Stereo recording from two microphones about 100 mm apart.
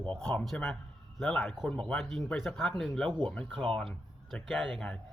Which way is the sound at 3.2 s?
15° left (ahead or behind).